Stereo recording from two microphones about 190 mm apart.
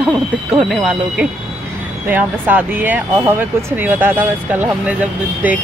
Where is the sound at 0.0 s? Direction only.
5° right (ahead or behind).